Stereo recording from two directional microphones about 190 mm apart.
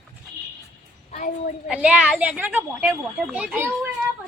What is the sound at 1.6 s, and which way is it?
A woman's voice, 5° right (ahead or behind).